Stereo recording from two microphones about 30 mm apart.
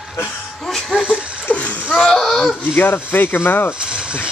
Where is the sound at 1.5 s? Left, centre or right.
Left.